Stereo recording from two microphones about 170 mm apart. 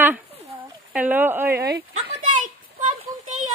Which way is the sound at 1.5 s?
70° right (ahead or behind).